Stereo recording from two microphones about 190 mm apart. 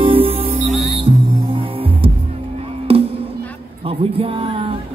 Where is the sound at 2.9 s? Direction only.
30° right (ahead or behind).